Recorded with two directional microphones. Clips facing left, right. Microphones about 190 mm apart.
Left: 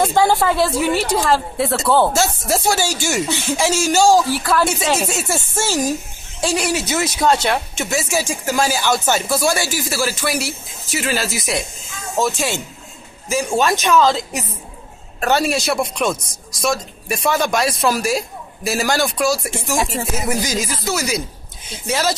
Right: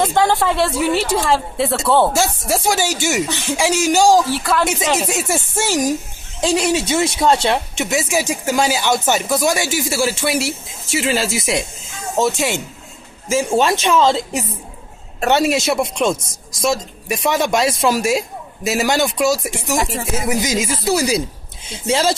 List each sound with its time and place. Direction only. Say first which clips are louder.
0.0 s a woman's voice: left 1 dB; 5° left (ahead or behind)
2.1 s speech: even; 15° right (ahead or behind)
4.3 s a woman's voice: even; centre (ahead or behind)
4.6 s speech: even; 20° right (ahead or behind)